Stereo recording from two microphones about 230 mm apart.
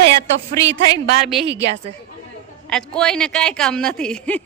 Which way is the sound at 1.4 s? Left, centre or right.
Right.